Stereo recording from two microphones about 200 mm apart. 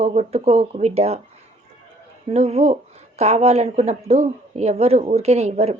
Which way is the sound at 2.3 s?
30° right (ahead or behind).